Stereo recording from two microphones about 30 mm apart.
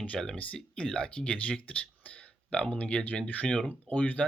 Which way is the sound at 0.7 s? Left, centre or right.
Left.